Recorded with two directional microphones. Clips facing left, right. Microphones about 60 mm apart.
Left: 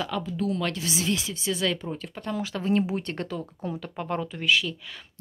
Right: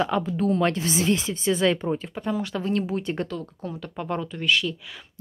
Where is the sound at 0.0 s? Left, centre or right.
Right.